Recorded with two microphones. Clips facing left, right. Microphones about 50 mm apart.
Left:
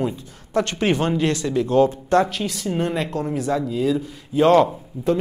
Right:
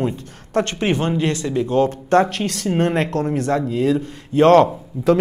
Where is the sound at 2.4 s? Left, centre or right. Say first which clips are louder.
Right 4 dB; right.